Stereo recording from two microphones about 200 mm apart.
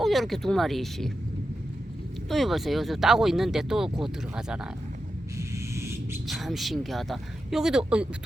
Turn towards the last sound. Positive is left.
turn(degrees=0)  # may be behind; listen again after turning